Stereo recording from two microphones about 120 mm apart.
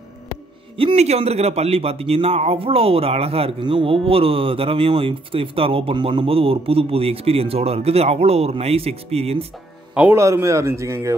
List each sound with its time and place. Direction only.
0.7 s a man's voice: 55° right (ahead or behind)
10.1 s a man's voice: 25° right (ahead or behind)